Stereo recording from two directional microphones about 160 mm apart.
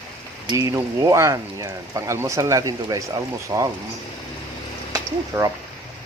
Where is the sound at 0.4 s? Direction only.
20° right (ahead or behind).